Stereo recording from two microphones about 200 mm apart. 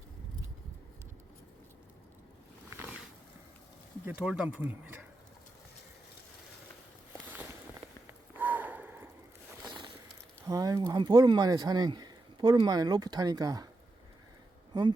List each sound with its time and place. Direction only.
2.6 s a sound: 5° right (ahead or behind)
4.0 s speech: 5° right (ahead or behind)
8.4 s snort: 10° right (ahead or behind)
10.4 s speech: 20° right (ahead or behind)
14.7 s speech: 20° right (ahead or behind)